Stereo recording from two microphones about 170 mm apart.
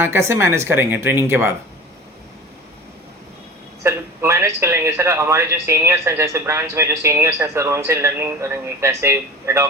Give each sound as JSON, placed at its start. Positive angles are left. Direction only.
{"t": 0.0, "sound": "a man's voice", "side_deg": -15}
{"t": 3.8, "sound": "a man's voice", "side_deg": -15}